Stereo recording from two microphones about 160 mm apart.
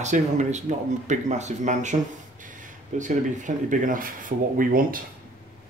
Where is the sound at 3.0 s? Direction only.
50° right (ahead or behind).